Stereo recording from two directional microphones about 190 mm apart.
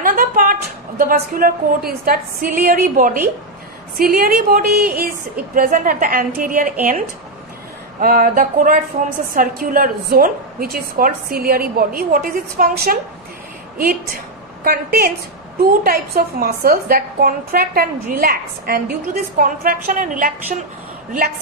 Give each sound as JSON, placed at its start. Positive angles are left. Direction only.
{"t": 0.0, "sound": "a woman's voice", "side_deg": -50}
{"t": 8.0, "sound": "a woman's voice", "side_deg": -50}
{"t": 9.0, "sound": "a woman's voice", "side_deg": -35}
{"t": 9.6, "sound": "a woman's voice", "side_deg": -50}
{"t": 14.6, "sound": "a woman's voice", "side_deg": -50}